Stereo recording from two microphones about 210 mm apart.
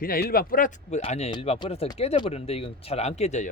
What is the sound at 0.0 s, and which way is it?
Speech, 45° left (ahead or behind).